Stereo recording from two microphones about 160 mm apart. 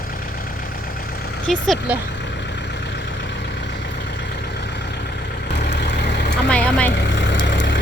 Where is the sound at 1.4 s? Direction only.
Centre (ahead or behind).